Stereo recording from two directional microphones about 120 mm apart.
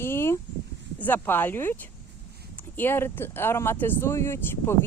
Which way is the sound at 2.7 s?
20° left (ahead or behind).